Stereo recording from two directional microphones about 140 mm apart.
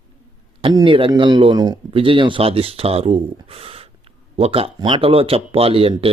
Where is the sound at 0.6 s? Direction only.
35° right (ahead or behind).